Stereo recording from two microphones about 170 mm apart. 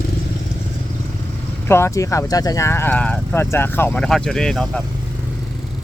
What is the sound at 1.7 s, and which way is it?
Speech, 15° left (ahead or behind).